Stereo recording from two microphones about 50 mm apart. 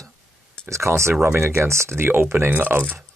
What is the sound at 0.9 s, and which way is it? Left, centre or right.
Speech, right.